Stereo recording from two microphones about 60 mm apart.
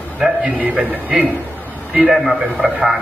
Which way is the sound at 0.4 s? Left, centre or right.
Right.